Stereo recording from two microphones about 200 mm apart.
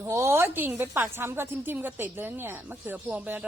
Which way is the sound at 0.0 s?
15° right (ahead or behind).